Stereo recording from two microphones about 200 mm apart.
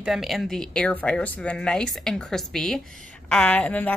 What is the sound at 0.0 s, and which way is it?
A woman's voice, centre (ahead or behind).